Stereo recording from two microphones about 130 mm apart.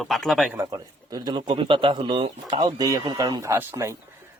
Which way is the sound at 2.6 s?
30° right (ahead or behind).